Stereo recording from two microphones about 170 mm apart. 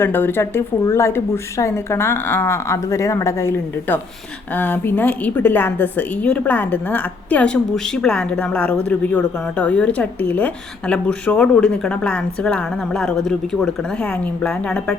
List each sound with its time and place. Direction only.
0.0 s speech: 10° left (ahead or behind)